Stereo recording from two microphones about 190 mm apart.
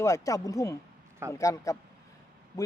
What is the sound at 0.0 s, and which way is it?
Speech, 15° left (ahead or behind).